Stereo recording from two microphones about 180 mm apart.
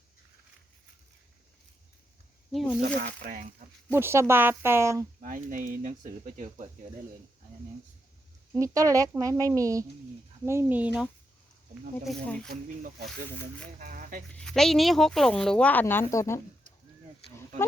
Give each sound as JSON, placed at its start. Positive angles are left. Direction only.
{"t": 2.5, "sound": "speech", "side_deg": 0}
{"t": 2.8, "sound": "speech", "side_deg": -45}
{"t": 3.9, "sound": "speech", "side_deg": -15}
{"t": 5.2, "sound": "speech", "side_deg": -45}
{"t": 8.5, "sound": "speech", "side_deg": -20}
{"t": 12.0, "sound": "speech", "side_deg": 5}
{"t": 13.7, "sound": "speech", "side_deg": -45}
{"t": 14.3, "sound": "speech", "side_deg": 5}